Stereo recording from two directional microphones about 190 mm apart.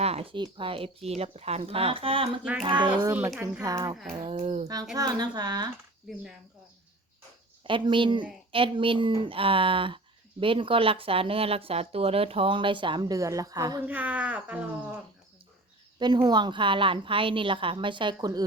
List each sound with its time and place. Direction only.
0.0 s speech: 30° right (ahead or behind)
3.1 s speech: 10° right (ahead or behind)
4.3 s a child's voice: 35° right (ahead or behind)
4.9 s speech: 20° right (ahead or behind)
7.6 s speech: 25° right (ahead or behind)
13.8 s speech: 10° right (ahead or behind)
16.0 s speech: 25° right (ahead or behind)